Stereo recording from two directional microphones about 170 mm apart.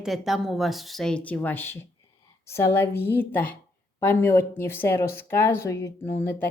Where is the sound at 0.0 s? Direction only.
Centre (ahead or behind).